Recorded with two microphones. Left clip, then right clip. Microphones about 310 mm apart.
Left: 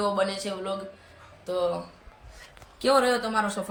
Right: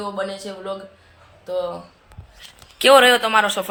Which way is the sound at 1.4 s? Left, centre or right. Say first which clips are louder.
Right 3 dB; centre.